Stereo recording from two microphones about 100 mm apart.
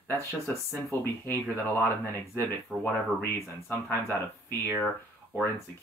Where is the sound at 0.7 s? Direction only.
25° left (ahead or behind).